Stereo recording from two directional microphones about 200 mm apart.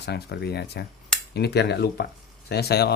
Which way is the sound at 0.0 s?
55° left (ahead or behind).